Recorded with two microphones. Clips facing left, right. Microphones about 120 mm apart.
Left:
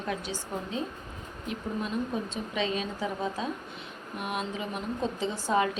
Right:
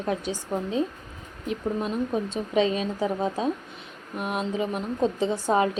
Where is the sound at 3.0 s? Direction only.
35° right (ahead or behind).